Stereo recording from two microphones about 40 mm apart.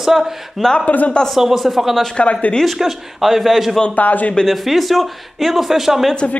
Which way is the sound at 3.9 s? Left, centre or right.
Left.